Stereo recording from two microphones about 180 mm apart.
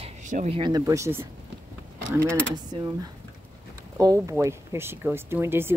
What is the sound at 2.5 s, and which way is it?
Speech, 20° right (ahead or behind).